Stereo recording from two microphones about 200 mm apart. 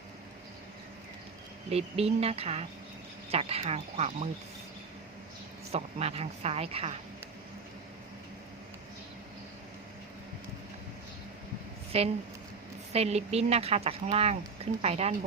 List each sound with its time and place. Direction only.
1.7 s speech: 30° right (ahead or behind)
5.7 s speech: 30° right (ahead or behind)
11.9 s speech: 30° right (ahead or behind)